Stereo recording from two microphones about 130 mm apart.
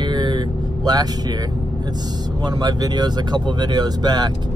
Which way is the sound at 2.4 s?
30° right (ahead or behind).